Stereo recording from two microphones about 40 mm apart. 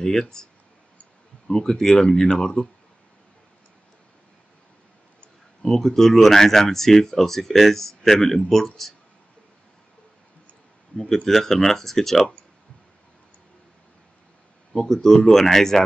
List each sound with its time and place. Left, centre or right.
0.0 s speech: centre
1.5 s speech: centre
5.6 s speech: centre
10.9 s speech: left
11.2 s speech: centre
14.7 s speech: centre